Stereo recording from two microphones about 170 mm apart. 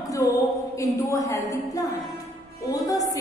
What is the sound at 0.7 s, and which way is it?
A woman's voice, 20° left (ahead or behind).